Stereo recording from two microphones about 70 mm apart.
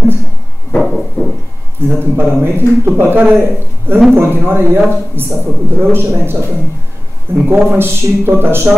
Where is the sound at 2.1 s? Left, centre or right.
Right.